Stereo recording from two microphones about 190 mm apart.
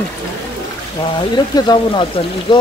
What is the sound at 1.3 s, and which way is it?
Speech, 25° left (ahead or behind).